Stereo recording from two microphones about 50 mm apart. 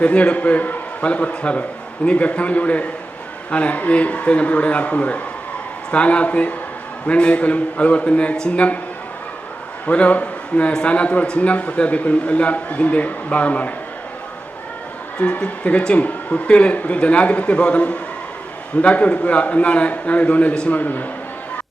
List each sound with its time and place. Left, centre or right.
0.0 s a man's voice: left
9.8 s a man's voice: left
15.2 s a man's voice: left